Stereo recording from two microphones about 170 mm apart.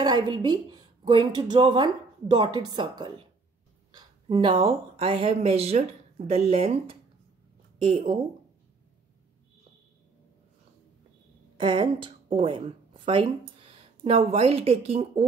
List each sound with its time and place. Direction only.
0.0 s a woman's voice: 25° right (ahead or behind)
11.5 s a woman's voice: 30° right (ahead or behind)